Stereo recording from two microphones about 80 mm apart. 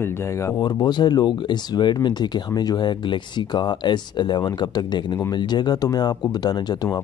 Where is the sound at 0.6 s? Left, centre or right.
Left.